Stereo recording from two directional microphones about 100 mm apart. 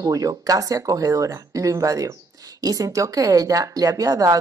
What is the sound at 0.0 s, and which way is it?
Speech, 35° right (ahead or behind).